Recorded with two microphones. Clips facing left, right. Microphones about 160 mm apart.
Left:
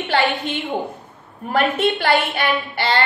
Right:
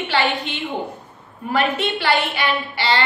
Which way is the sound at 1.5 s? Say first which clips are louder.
Left 2 dB; 50° left (ahead or behind).